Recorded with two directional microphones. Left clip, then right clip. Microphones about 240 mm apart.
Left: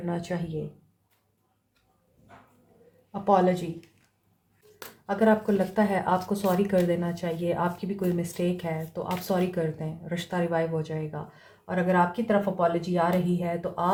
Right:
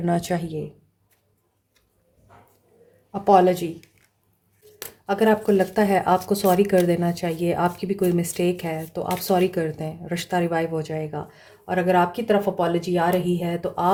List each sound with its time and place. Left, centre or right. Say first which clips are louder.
0.0 s speech: right 8 dB; right
3.1 s speech: right 6 dB; right
5.0 s speech: right 4 dB; right